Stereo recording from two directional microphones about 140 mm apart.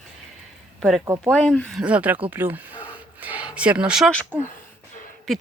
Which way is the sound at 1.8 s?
10° right (ahead or behind).